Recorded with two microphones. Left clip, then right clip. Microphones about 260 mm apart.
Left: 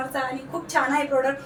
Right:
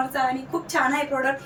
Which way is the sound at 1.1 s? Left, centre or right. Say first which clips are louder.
Left 2 dB; right.